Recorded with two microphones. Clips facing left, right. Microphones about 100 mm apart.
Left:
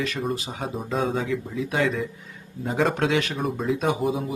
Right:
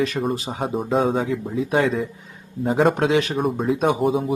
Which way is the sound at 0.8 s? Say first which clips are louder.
Right 5 dB; 50° right (ahead or behind).